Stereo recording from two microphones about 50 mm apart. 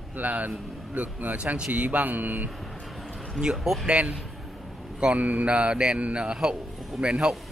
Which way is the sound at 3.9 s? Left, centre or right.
Right.